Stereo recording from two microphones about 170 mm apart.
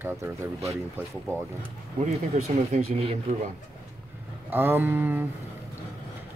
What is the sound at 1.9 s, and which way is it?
Speech, 40° right (ahead or behind).